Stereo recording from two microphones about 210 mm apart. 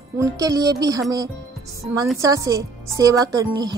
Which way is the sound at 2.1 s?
15° right (ahead or behind).